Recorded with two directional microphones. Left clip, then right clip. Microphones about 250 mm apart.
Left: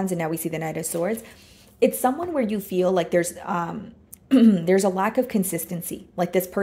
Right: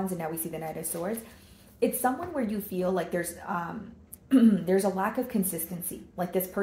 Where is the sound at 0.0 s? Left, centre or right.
Left.